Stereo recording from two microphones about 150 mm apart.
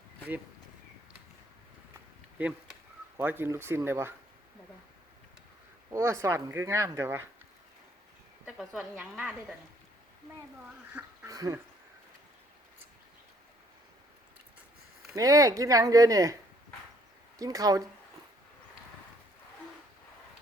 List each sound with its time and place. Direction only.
2.4 s speech: 10° right (ahead or behind)
5.9 s speech: 20° right (ahead or behind)
8.4 s a woman's voice: centre (ahead or behind)
10.9 s speech: 10° right (ahead or behind)
15.1 s speech: 20° right (ahead or behind)